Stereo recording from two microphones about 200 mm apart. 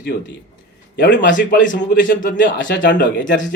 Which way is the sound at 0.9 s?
60° left (ahead or behind).